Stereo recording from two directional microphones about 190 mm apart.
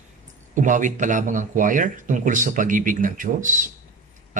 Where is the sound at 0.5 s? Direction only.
40° right (ahead or behind).